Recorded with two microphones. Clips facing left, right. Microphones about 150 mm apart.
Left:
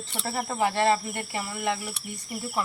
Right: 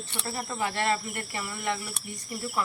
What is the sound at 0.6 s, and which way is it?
Speech, 25° left (ahead or behind).